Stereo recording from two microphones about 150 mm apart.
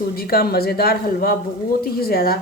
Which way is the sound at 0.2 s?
90° left.